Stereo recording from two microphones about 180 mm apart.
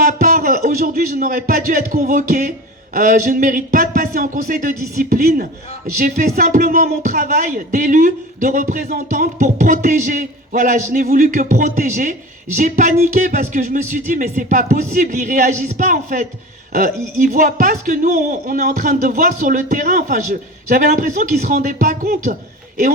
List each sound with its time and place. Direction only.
0.0 s a man's voice: 45° right (ahead or behind)
6.0 s a man's voice: 40° right (ahead or behind)